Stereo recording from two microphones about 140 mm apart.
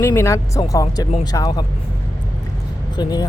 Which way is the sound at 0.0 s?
20° left (ahead or behind).